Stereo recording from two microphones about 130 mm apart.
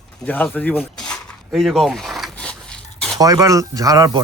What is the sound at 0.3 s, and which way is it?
Speech, 10° left (ahead or behind).